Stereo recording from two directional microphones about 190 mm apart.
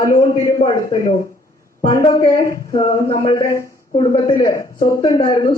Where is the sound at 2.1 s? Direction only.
15° left (ahead or behind).